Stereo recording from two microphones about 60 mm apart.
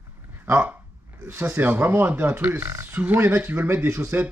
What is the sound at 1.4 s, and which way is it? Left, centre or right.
Speech, right.